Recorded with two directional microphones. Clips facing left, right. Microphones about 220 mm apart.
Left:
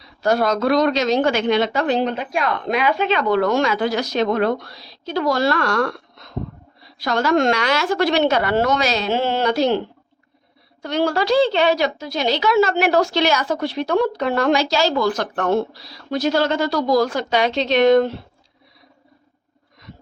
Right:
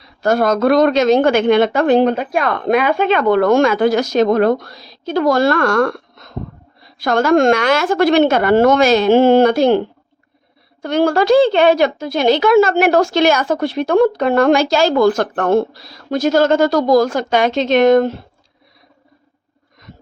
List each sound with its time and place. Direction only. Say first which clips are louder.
0.0 s a woman's voice: right 3 dB; 50° right (ahead or behind)
10.8 s a woman's voice: right 6 dB; 50° right (ahead or behind)